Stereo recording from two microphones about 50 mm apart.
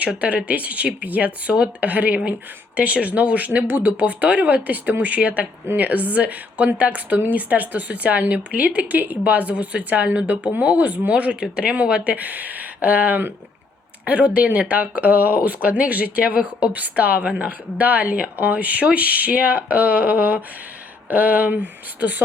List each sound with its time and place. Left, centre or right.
0.2 s speech: right